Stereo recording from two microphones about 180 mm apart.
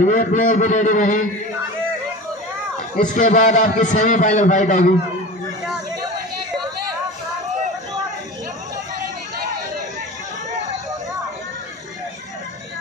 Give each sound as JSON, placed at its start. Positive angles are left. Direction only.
{"t": 0.0, "sound": "a man's voice", "side_deg": 45}
{"t": 3.2, "sound": "a man's voice", "side_deg": 45}